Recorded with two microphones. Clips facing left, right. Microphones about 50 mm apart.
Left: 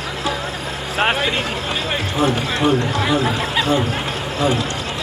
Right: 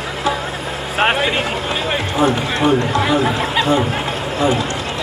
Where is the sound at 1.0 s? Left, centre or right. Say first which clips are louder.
Right 2 dB; centre.